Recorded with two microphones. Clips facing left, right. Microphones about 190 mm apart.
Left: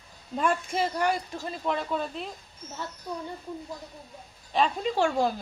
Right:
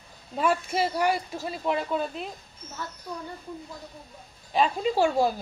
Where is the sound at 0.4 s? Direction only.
5° right (ahead or behind).